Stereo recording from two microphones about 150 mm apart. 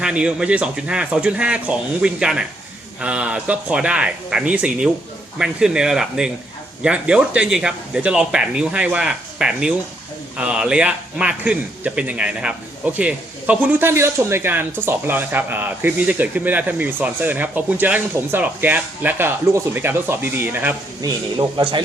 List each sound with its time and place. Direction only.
0.0 s speech: 5° right (ahead or behind)
21.0 s speech: 30° right (ahead or behind)